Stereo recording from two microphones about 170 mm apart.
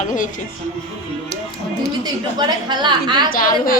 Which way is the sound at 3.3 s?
55° left (ahead or behind).